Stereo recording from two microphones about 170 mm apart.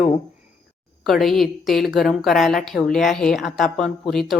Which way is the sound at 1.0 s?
Centre (ahead or behind).